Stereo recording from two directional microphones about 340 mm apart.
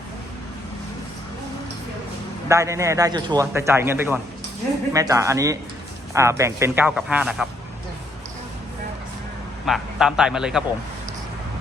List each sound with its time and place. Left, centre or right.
2.5 s a man's voice: centre
9.6 s speech: centre